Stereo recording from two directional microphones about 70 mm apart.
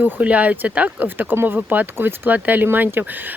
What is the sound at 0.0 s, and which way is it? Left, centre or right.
Speech, right.